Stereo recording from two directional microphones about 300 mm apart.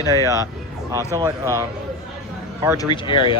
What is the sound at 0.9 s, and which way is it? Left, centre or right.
Speech, centre.